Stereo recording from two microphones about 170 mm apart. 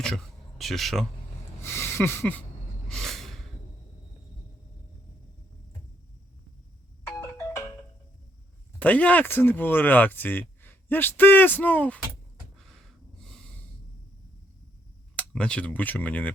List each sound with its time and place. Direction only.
0.0 s speech: 5° left (ahead or behind)
1.6 s a sound: 15° left (ahead or behind)
2.9 s snort: centre (ahead or behind)
7.2 s ringtone: 20° left (ahead or behind)
8.8 s speech: 10° left (ahead or behind)
15.1 s speech: 5° left (ahead or behind)